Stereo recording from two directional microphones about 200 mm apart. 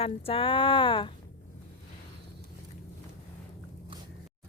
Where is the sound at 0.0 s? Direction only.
30° left (ahead or behind).